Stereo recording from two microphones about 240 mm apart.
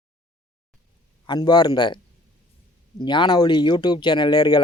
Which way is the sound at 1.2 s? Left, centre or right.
Centre.